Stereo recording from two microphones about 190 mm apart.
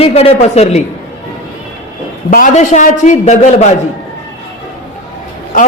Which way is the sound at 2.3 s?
45° left (ahead or behind).